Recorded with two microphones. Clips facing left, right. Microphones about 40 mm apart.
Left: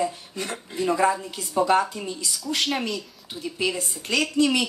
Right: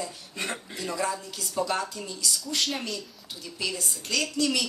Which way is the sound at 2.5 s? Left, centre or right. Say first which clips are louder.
Left 7 dB; centre.